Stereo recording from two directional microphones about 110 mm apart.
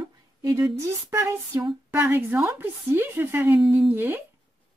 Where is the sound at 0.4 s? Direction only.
30° right (ahead or behind).